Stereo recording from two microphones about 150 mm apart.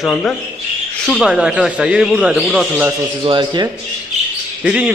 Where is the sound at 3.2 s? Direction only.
30° right (ahead or behind).